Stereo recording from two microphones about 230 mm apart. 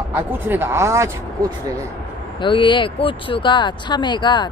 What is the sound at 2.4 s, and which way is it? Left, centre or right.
Speech, left.